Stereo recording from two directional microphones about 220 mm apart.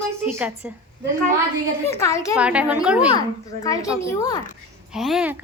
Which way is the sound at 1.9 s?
15° left (ahead or behind).